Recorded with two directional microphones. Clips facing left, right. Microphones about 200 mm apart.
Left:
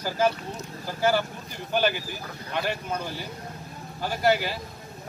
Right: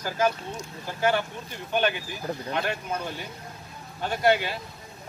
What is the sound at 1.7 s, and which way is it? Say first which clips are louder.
Speech: left 1 dB; 5° left (ahead or behind).